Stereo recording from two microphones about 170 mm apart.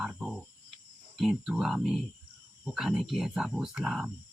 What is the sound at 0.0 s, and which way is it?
Cricket, 5° right (ahead or behind).